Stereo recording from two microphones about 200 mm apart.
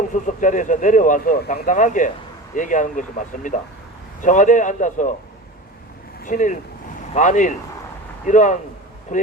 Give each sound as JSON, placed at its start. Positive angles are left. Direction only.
{"t": 0.1, "sound": "speech", "side_deg": 40}
{"t": 6.2, "sound": "speech", "side_deg": 40}